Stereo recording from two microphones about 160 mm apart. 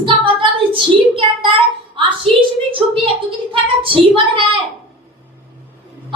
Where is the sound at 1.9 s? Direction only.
30° right (ahead or behind).